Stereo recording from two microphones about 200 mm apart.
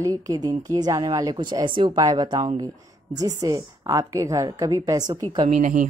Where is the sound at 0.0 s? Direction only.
20° right (ahead or behind).